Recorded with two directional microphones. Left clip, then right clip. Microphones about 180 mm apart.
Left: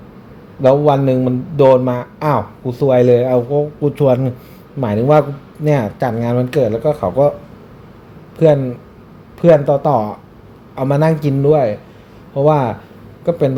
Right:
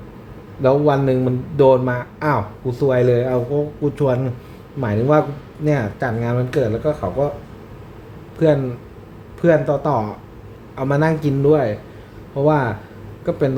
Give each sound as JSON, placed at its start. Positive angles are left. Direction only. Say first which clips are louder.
{"t": 0.6, "sound": "a man's voice", "louder": "left 4 dB", "side_deg": 15}
{"t": 8.4, "sound": "a man's voice", "louder": "left 5 dB", "side_deg": 20}